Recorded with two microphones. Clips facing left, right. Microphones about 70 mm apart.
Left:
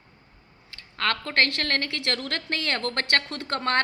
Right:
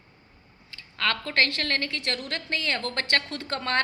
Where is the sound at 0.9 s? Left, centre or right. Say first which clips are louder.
Left 1 dB; left.